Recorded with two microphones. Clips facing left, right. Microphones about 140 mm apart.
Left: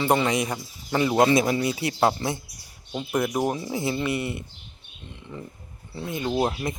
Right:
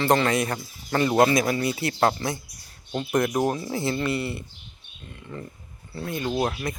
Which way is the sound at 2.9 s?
5° left (ahead or behind).